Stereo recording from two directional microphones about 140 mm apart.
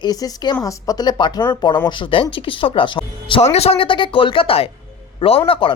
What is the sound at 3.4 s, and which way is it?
Speech, 50° left (ahead or behind).